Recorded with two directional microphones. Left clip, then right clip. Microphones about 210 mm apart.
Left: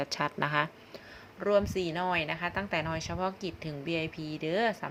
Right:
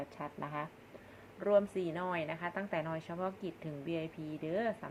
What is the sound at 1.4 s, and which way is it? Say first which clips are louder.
A woman's voice: left 3 dB; 20° left (ahead or behind).